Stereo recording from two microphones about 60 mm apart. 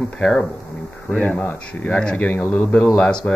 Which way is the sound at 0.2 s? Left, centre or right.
Centre.